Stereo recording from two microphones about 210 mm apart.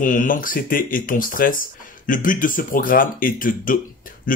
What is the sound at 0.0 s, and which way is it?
Speech, 40° left (ahead or behind).